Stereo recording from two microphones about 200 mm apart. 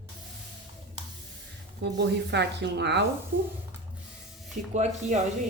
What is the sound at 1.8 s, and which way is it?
Speech, 60° right (ahead or behind).